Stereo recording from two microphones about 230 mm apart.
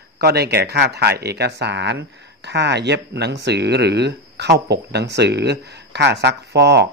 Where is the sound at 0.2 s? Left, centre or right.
Right.